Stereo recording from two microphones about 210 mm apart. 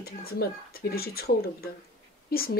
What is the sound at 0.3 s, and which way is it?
A woman's voice, 50° left (ahead or behind).